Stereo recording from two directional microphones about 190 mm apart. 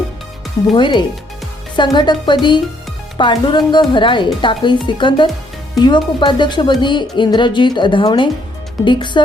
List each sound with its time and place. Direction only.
0.7 s speech: 25° left (ahead or behind)